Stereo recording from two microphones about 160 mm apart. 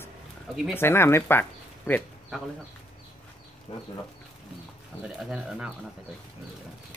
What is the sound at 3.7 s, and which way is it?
Speech, 35° left (ahead or behind).